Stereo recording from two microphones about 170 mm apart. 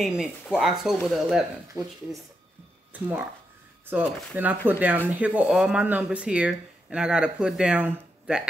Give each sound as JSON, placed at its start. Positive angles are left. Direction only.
{"t": 0.0, "sound": "speech", "side_deg": 0}
{"t": 1.7, "sound": "speech", "side_deg": -20}